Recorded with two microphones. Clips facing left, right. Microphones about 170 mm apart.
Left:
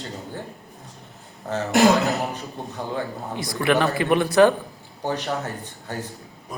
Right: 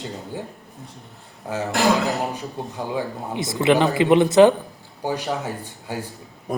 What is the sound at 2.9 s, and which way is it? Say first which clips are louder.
Speech: right 2 dB; 10° right (ahead or behind).